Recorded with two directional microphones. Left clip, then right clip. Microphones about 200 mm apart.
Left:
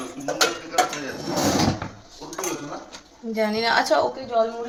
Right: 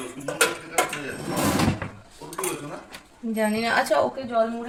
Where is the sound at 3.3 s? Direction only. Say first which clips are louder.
Left 2 dB; centre (ahead or behind).